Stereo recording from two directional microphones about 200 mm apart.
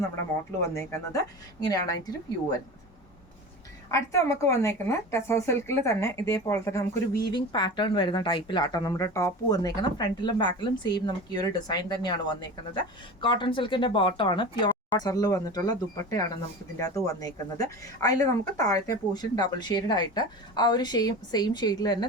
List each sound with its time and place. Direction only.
0.6 s a woman's voice: 15° left (ahead or behind)
3.9 s a woman's voice: 15° left (ahead or behind)